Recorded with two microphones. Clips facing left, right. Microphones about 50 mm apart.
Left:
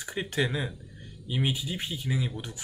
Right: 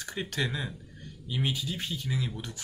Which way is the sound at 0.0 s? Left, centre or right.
Centre.